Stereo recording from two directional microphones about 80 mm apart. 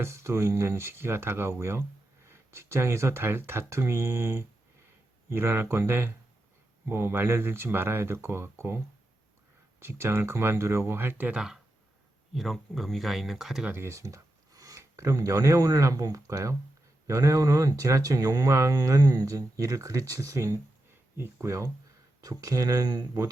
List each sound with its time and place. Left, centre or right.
0.0 s speech: right
9.8 s speech: right
11.3 s speech: centre
13.7 s speech: right